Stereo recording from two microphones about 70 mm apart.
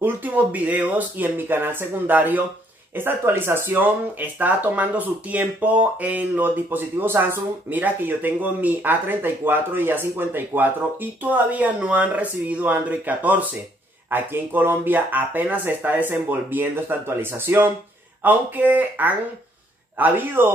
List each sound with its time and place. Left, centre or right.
0.0 s speech: right